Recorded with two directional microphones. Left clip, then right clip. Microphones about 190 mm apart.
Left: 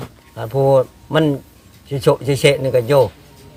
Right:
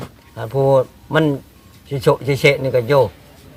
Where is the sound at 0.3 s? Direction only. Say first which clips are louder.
Left 1 dB; 20° left (ahead or behind).